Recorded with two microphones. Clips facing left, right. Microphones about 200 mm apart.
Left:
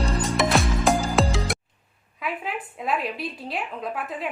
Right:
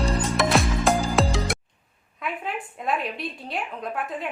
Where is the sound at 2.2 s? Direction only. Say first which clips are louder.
Even; centre (ahead or behind).